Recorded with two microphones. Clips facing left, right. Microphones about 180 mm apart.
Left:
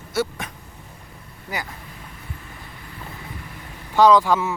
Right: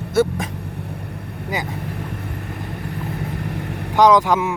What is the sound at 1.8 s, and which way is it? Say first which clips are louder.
Vehicle: right 13 dB; 65° right (ahead or behind).